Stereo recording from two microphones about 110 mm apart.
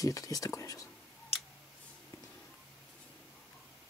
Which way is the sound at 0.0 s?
30° left (ahead or behind).